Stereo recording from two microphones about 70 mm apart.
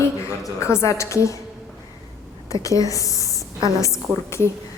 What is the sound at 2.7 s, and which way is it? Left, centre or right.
Speech, left.